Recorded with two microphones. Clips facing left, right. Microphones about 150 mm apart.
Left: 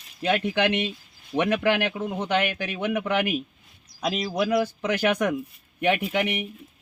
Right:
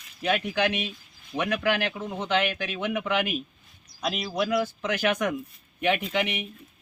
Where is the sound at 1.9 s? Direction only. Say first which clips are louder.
Left 2 dB; 15° left (ahead or behind).